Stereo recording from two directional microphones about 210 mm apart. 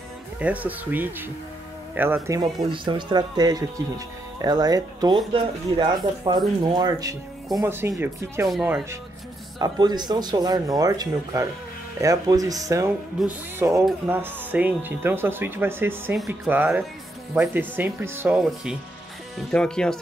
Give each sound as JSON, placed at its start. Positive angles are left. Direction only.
{"t": 0.4, "sound": "speech", "side_deg": -5}
{"t": 2.2, "sound": "speech", "side_deg": -20}
{"t": 9.6, "sound": "speech", "side_deg": -20}
{"t": 13.2, "sound": "speech", "side_deg": 0}
{"t": 13.6, "sound": "speech", "side_deg": -15}